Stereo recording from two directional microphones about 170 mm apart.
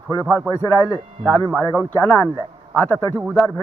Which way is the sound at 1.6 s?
20° right (ahead or behind).